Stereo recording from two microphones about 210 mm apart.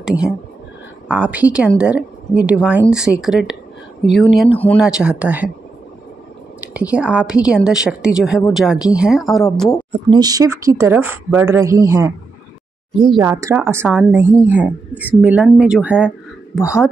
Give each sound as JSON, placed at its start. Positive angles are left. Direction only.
{"t": 0.0, "sound": "a woman's voice", "side_deg": -5}
{"t": 4.7, "sound": "a woman's voice", "side_deg": -5}
{"t": 6.6, "sound": "a woman's voice", "side_deg": -5}
{"t": 10.0, "sound": "a woman's voice", "side_deg": -20}